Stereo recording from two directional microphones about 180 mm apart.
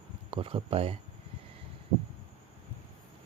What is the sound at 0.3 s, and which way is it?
Speech, 30° right (ahead or behind).